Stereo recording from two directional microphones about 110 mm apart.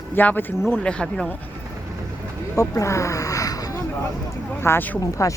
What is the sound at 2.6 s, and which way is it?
Speech, 30° left (ahead or behind).